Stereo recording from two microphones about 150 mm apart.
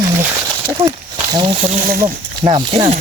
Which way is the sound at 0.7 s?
25° right (ahead or behind).